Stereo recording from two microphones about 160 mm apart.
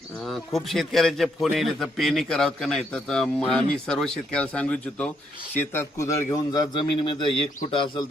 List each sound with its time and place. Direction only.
0.3 s a man's voice: centre (ahead or behind); by 8.0 s 30° left (ahead or behind)